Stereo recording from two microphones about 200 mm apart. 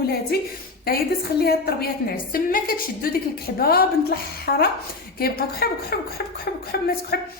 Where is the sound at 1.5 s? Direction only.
50° left (ahead or behind).